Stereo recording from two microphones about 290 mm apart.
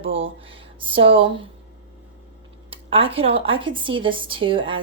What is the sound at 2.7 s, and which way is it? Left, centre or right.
Speech, centre.